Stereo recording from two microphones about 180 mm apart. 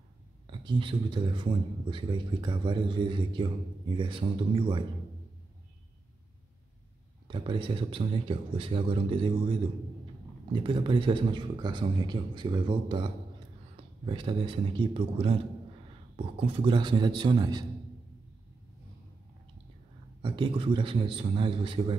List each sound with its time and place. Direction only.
0.5 s speech: 25° right (ahead or behind)
7.2 s speech: 25° right (ahead or behind)
10.5 s speech: 30° right (ahead or behind)
20.2 s speech: 25° right (ahead or behind)